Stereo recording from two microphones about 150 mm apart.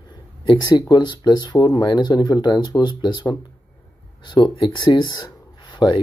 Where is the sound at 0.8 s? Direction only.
25° left (ahead or behind).